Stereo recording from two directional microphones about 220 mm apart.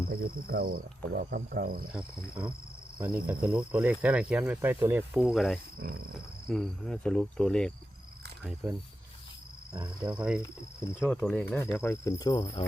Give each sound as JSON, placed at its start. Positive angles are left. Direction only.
{"t": 0.1, "sound": "cricket", "side_deg": -45}
{"t": 1.9, "sound": "speech", "side_deg": -5}
{"t": 5.8, "sound": "cricket", "side_deg": -45}
{"t": 6.1, "sound": "speech", "side_deg": 0}
{"t": 10.0, "sound": "speech", "side_deg": -5}
{"t": 11.8, "sound": "insect", "side_deg": 10}